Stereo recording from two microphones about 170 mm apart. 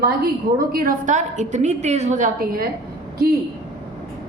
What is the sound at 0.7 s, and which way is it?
A woman's voice, 60° right (ahead or behind).